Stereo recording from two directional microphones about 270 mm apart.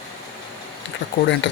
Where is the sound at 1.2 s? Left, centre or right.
Left.